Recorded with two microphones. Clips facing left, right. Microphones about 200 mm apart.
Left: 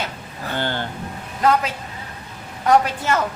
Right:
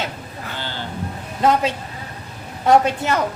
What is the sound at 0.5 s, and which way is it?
Speech, 55° left (ahead or behind).